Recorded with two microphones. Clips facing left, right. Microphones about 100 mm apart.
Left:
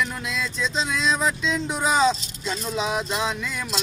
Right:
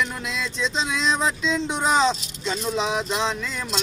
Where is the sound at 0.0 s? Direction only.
Centre (ahead or behind).